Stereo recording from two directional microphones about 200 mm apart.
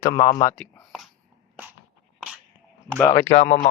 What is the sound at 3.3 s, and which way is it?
Speech, 40° left (ahead or behind).